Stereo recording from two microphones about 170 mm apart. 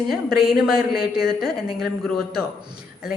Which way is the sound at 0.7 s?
60° left (ahead or behind).